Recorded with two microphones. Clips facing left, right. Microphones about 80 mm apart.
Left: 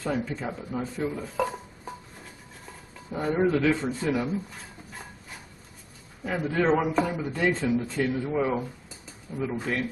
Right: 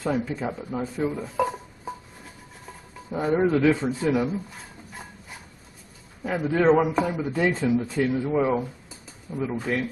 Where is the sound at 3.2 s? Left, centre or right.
Centre.